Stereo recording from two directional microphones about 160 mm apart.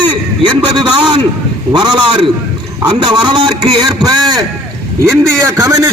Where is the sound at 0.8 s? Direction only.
30° right (ahead or behind).